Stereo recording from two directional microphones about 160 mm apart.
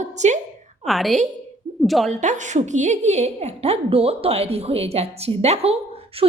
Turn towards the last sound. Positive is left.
turn(degrees=-40)  # may be behind; listen again after turning